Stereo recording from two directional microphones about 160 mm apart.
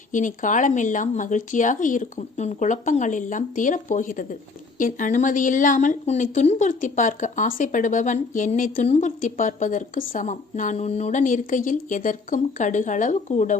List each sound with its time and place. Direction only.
0.1 s a woman's voice: 55° left (ahead or behind)